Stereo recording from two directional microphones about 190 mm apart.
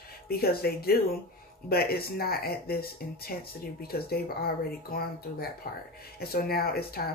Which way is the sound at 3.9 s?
55° left (ahead or behind).